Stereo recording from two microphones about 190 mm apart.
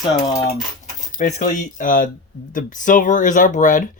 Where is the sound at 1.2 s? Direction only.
40° left (ahead or behind).